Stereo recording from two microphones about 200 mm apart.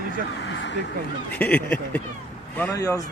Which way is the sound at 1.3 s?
5° left (ahead or behind).